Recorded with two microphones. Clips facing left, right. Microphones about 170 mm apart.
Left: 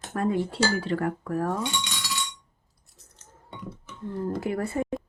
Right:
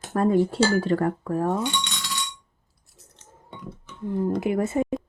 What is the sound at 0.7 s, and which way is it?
Speech, 40° right (ahead or behind).